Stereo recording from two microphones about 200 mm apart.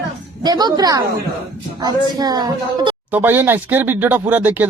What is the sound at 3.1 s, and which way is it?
Speech, 10° right (ahead or behind).